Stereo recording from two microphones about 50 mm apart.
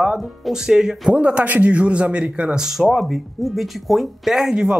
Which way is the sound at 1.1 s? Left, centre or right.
Right.